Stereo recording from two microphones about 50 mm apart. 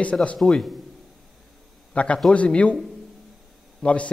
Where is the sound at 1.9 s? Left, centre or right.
Left.